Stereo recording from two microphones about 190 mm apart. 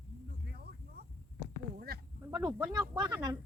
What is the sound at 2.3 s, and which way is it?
Speech, 10° right (ahead or behind).